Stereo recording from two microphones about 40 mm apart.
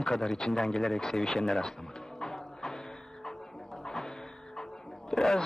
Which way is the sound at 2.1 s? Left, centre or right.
Centre.